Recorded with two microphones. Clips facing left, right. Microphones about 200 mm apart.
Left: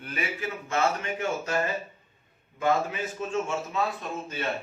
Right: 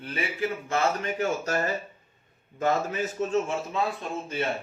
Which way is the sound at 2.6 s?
40° right (ahead or behind).